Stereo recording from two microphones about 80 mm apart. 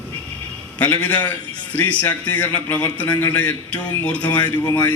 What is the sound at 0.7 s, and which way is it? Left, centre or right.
A man's voice, centre.